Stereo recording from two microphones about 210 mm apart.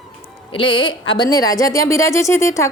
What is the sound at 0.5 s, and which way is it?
A woman's voice, 25° left (ahead or behind).